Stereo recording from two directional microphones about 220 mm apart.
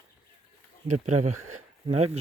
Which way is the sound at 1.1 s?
90° right.